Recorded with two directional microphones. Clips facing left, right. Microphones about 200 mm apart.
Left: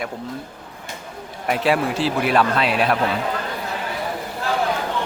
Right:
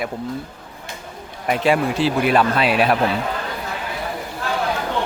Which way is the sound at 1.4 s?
Centre (ahead or behind).